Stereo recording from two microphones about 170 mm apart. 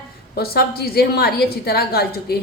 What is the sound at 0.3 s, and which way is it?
A woman's voice, 65° left (ahead or behind).